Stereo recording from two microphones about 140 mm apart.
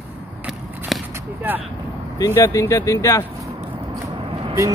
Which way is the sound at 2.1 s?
25° left (ahead or behind).